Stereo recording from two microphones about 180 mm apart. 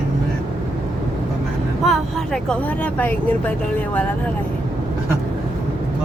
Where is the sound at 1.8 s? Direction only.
Centre (ahead or behind).